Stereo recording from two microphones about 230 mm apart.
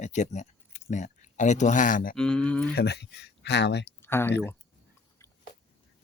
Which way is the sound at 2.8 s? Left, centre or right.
Left.